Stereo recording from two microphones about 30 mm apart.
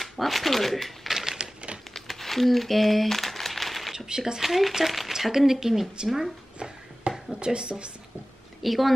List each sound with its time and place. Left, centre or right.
0.0 s speech: centre
1.0 s typewriter: centre
1.4 s typewriter: right
2.0 s crumpling: centre
3.9 s speech: centre
4.4 s speech: centre
6.6 s a sound: right
8.6 s speech: centre